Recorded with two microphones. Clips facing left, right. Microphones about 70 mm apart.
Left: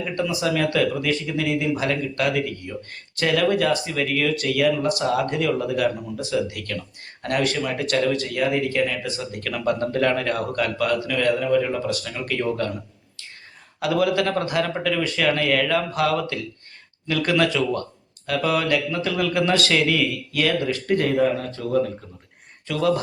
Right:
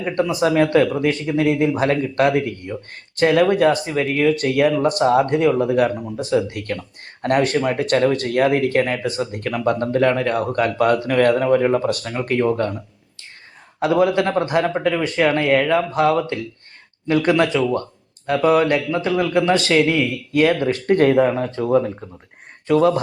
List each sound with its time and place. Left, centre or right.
0.0 s speech: right
9.8 s speech: right
13.7 s a man's voice: right
20.7 s speech: right
21.3 s speech: right